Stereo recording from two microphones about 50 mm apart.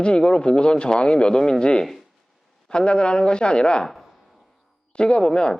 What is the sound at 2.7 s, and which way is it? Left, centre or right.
Speech, centre.